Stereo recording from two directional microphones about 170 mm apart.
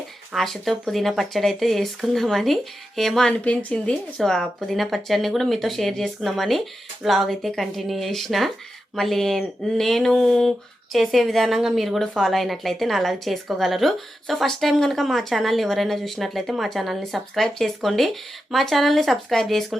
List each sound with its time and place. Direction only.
0.3 s a woman's voice: centre (ahead or behind)